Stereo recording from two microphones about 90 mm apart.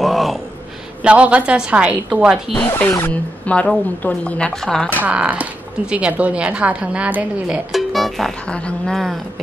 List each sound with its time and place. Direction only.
0.0 s a sound: centre (ahead or behind)
1.0 s a woman's voice: 15° right (ahead or behind)
2.6 s speech: 20° left (ahead or behind); by 4.8 s 5° left (ahead or behind)
5.0 s a woman's voice: 15° right (ahead or behind)
7.4 s speech: 5° right (ahead or behind)